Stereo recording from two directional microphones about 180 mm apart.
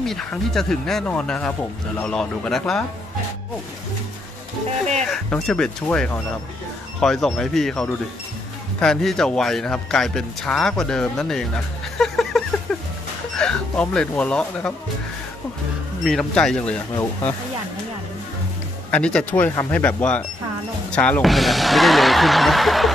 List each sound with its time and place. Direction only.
0.0 s a man's voice: 5° left (ahead or behind)
5.1 s a man's voice: 5° left (ahead or behind)
16.0 s a man's voice: 5° left (ahead or behind)
18.9 s a man's voice: 5° left (ahead or behind)